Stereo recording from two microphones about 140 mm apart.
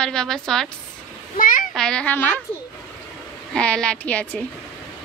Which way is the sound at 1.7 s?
5° left (ahead or behind).